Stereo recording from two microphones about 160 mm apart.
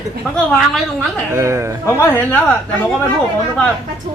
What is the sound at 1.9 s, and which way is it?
Speech, 15° left (ahead or behind).